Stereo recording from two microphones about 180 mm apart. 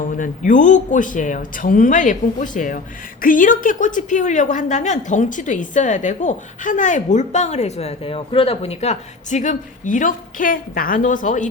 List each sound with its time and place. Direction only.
0.0 s speech: 45° left (ahead or behind)